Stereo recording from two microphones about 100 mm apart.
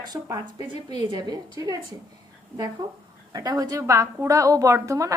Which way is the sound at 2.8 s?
40° right (ahead or behind).